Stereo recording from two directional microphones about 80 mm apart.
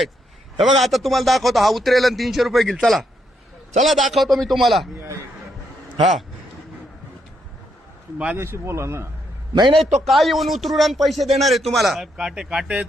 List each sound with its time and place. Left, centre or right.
0.6 s speech: centre
8.4 s speech: right
9.6 s a man's voice: right
10.0 s speech: centre